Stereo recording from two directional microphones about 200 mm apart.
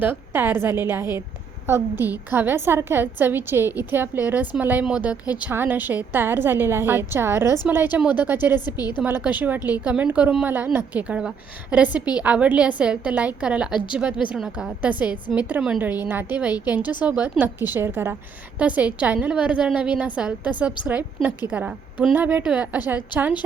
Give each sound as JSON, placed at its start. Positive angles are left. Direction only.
{"t": 0.0, "sound": "a woman's voice", "side_deg": -10}
{"t": 8.6, "sound": "a woman's voice", "side_deg": 20}
{"t": 9.0, "sound": "a woman's voice", "side_deg": -10}